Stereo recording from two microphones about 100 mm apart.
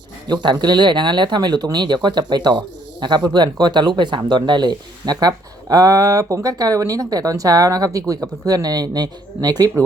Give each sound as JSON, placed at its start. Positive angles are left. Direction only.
{"t": 0.3, "sound": "speech", "side_deg": -45}